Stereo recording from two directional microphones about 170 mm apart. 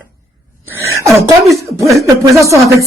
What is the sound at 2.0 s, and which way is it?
Speech, 20° right (ahead or behind).